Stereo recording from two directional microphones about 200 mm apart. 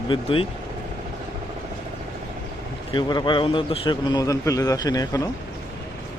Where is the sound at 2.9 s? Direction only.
20° left (ahead or behind).